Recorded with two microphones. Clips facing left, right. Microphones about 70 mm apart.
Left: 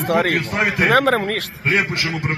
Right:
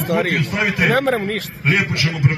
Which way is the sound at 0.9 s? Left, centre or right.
Left.